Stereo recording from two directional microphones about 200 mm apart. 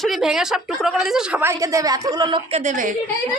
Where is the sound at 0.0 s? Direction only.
Centre (ahead or behind); by 2.6 s 20° right (ahead or behind).